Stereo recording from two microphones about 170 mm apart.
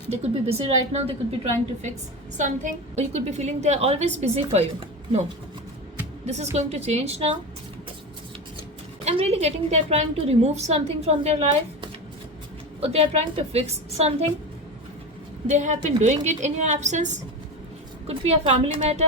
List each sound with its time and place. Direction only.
0.1 s a woman's voice: 35° right (ahead or behind)
2.4 s a woman's voice: 45° right (ahead or behind)
6.2 s a woman's voice: 40° right (ahead or behind)
9.0 s a woman's voice: 40° right (ahead or behind)
15.4 s a woman's voice: 45° right (ahead or behind)
18.1 s a woman's voice: 40° right (ahead or behind)